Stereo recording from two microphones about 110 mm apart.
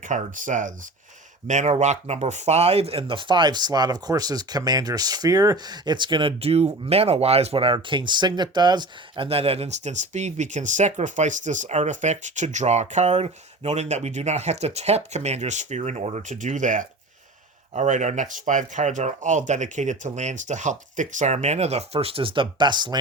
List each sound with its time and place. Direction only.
0.1 s speech: 90° right
1.5 s speech: 90° right; by 6.3 s 45° right (ahead or behind)
6.4 s speech: 65° right (ahead or behind); by 16.6 s 90° right
17.7 s speech: 90° right; by 23.0 s 40° right (ahead or behind)